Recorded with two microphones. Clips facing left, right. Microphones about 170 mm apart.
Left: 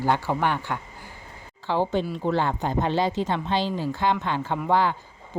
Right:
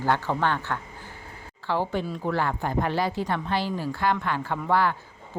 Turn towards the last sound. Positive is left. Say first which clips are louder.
# left 1 dB
turn(degrees=20)  # may be behind; listen again after turning